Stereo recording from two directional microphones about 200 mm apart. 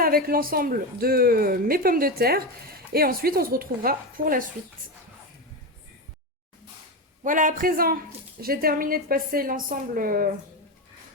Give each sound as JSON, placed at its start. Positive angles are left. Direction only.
{"t": 0.0, "sound": "speech", "side_deg": -45}
{"t": 7.3, "sound": "speech", "side_deg": -40}